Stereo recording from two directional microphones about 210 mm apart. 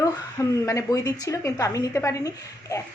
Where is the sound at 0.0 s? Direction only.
15° left (ahead or behind).